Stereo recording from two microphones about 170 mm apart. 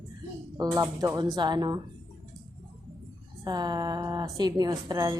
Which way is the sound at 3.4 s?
25° right (ahead or behind).